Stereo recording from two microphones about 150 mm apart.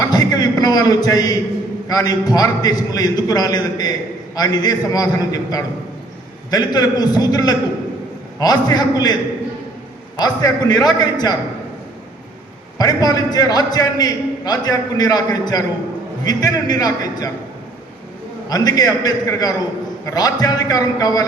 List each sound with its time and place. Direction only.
0.1 s a man's voice: 25° left (ahead or behind)
10.2 s a man's voice: 25° left (ahead or behind)
12.8 s a man's voice: 25° left (ahead or behind)
18.4 s a man's voice: 25° left (ahead or behind)